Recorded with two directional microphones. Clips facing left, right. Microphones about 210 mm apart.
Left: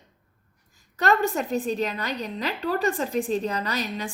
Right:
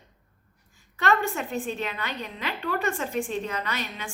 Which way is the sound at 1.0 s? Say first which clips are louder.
Left 3 dB; 40° left (ahead or behind).